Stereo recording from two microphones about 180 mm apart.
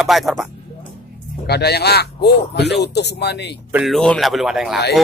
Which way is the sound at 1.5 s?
65° left (ahead or behind).